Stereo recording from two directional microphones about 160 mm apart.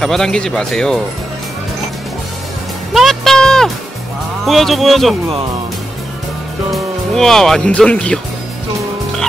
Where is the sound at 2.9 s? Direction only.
Centre (ahead or behind).